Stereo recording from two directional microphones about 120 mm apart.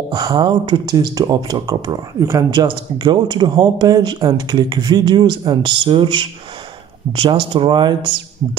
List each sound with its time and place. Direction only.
0.1 s speech: 35° right (ahead or behind)